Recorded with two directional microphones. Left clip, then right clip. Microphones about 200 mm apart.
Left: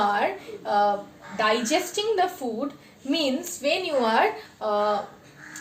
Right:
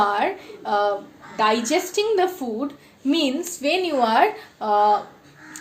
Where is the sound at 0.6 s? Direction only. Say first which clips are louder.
Right 1 dB; 50° right (ahead or behind).